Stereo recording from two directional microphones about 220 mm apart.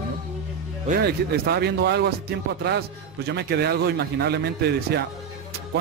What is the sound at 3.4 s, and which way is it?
Speech, 45° right (ahead or behind).